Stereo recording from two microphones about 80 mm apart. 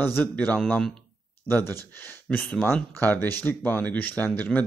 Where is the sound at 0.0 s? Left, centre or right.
Left.